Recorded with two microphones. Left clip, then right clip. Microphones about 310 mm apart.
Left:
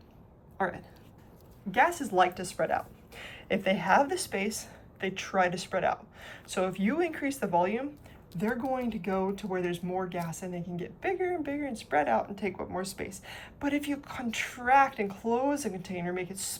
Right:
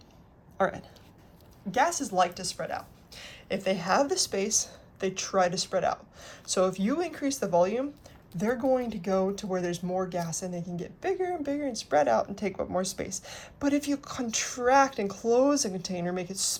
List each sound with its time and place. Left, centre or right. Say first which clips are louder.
0.6 s speech: right 4 dB; centre